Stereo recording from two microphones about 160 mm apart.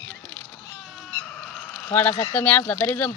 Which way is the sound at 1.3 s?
5° left (ahead or behind).